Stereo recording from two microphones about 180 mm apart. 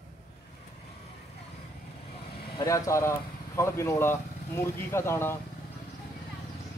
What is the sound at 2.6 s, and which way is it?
Speech, 15° left (ahead or behind).